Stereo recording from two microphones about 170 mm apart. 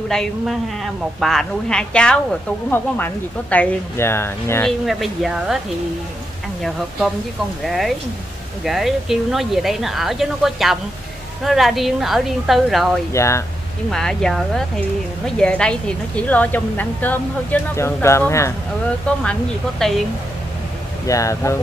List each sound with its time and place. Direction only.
0.1 s a woman's voice: 5° left (ahead or behind)
4.6 s speech: centre (ahead or behind)
7.6 s speech: centre (ahead or behind)
13.1 s a woman's voice: 15° left (ahead or behind)
13.8 s a woman's voice: 5° left (ahead or behind)
19.8 s speech: centre (ahead or behind)
21.1 s speech: 20° left (ahead or behind)